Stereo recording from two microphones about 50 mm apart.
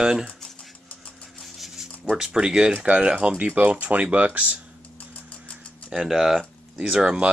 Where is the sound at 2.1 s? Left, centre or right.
Centre.